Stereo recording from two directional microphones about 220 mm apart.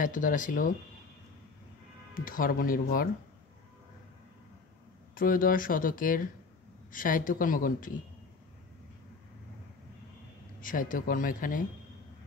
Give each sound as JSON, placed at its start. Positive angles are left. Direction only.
{"t": 0.0, "sound": "speech", "side_deg": 35}
{"t": 2.1, "sound": "speech", "side_deg": 40}
{"t": 5.1, "sound": "speech", "side_deg": 40}
{"t": 10.6, "sound": "speech", "side_deg": 40}